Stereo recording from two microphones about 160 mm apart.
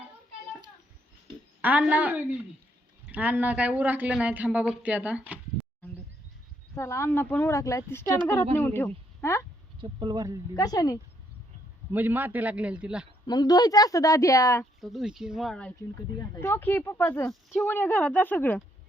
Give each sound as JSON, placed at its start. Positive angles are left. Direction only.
{"t": 1.6, "sound": "speech", "side_deg": -10}
{"t": 6.7, "sound": "speech", "side_deg": 15}
{"t": 9.8, "sound": "speech", "side_deg": -25}
{"t": 10.5, "sound": "a woman's voice", "side_deg": 25}
{"t": 11.9, "sound": "speech", "side_deg": -10}
{"t": 13.2, "sound": "a woman's voice", "side_deg": 25}
{"t": 14.6, "sound": "speech", "side_deg": 0}
{"t": 16.3, "sound": "speech", "side_deg": 15}